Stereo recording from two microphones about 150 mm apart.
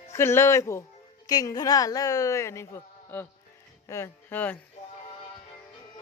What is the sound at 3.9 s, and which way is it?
Speech, 20° left (ahead or behind).